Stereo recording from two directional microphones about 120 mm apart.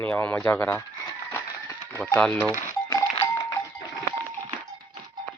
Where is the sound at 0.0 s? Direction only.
10° left (ahead or behind).